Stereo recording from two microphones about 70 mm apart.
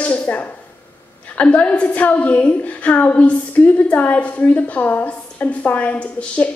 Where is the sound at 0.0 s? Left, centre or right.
Left.